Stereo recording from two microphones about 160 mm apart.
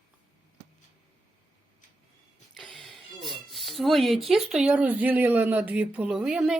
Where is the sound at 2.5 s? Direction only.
Centre (ahead or behind).